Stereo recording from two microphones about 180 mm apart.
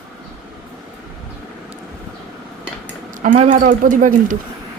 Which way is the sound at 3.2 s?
40° right (ahead or behind).